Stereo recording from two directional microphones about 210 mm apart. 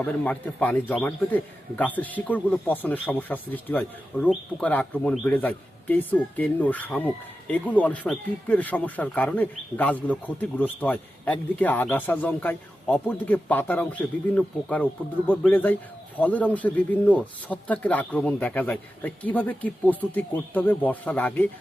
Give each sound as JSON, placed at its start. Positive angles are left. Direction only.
{"t": 0.0, "sound": "speech", "side_deg": 5}